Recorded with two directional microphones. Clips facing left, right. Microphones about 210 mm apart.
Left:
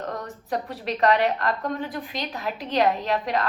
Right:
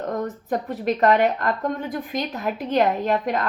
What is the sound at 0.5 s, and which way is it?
A woman's voice, 45° right (ahead or behind).